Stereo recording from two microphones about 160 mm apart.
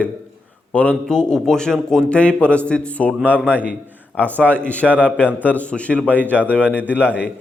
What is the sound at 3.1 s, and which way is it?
Speech, 10° right (ahead or behind).